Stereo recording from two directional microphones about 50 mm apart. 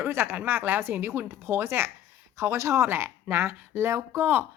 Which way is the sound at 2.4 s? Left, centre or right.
Right.